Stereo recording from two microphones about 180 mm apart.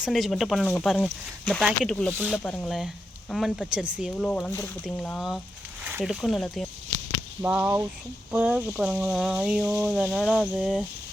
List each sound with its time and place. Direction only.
0.0 s speech: centre (ahead or behind)
2.1 s speech: 10° right (ahead or behind)
2.4 s speech: 5° left (ahead or behind)
4.4 s speech: 10° left (ahead or behind)